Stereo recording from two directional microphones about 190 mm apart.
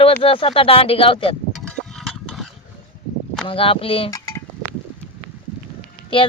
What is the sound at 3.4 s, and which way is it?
Speech, 30° left (ahead or behind).